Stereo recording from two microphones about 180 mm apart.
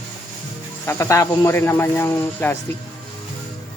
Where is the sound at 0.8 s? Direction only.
15° left (ahead or behind).